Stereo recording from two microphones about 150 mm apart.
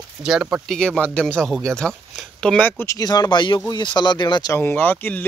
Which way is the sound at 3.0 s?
25° left (ahead or behind).